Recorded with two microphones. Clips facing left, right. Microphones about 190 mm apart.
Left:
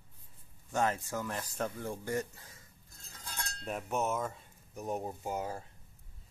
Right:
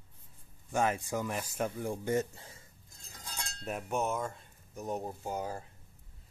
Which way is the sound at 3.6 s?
Centre (ahead or behind).